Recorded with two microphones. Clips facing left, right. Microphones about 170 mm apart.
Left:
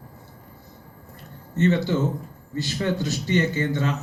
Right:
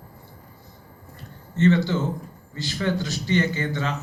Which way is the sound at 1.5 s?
20° left (ahead or behind).